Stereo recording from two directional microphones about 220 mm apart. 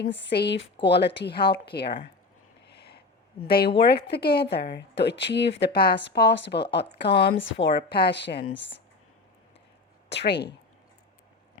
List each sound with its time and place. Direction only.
0.3 s a woman's voice: 50° left (ahead or behind)
2.6 s a sound: 50° left (ahead or behind)
3.4 s a woman's voice: 45° left (ahead or behind)
10.1 s a woman's voice: 50° left (ahead or behind)